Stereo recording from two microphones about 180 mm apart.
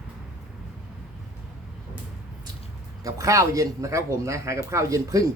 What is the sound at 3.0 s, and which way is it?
Speech, 20° right (ahead or behind).